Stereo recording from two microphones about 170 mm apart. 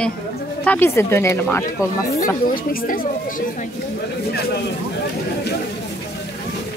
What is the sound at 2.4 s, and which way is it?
Speech, 55° left (ahead or behind).